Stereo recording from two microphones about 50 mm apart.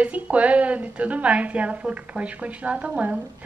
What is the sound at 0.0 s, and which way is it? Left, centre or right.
A woman's voice, right.